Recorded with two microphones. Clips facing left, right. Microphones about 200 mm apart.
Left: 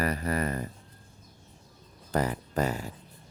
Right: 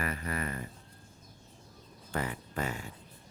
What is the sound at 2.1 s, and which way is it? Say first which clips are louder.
Speech: left 7 dB; 40° left (ahead or behind).